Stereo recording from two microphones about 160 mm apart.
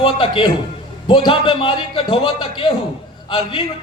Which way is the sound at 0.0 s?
30° left (ahead or behind).